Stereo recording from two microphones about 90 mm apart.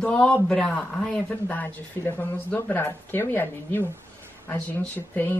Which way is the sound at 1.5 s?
20° left (ahead or behind).